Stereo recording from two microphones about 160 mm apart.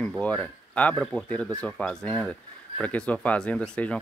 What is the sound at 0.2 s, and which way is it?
Speech, 10° left (ahead or behind).